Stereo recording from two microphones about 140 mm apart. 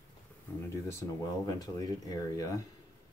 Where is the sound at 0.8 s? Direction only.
25° left (ahead or behind).